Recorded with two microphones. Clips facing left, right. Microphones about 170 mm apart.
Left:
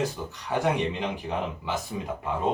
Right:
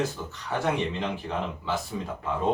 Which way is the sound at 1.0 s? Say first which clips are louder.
Left 1 dB; 15° left (ahead or behind).